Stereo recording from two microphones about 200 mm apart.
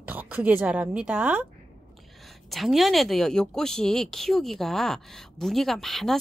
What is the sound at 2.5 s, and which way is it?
Speech, centre (ahead or behind).